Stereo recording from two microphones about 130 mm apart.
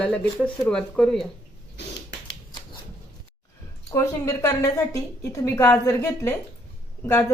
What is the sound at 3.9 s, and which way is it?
A woman's voice, 25° left (ahead or behind).